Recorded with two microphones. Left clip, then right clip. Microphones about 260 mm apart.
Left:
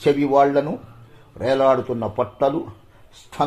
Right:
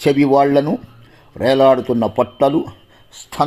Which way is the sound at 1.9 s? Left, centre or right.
Right.